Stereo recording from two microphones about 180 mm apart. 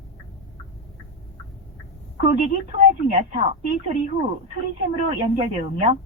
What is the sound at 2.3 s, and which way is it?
A woman's voice, 40° right (ahead or behind).